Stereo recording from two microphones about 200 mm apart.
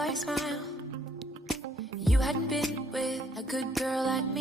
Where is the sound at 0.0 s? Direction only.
Centre (ahead or behind).